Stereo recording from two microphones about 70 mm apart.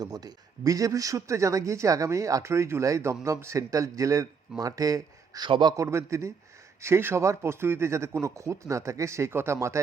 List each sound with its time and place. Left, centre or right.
0.0 s speech: right
5.4 s a man's voice: right
5.7 s speech: right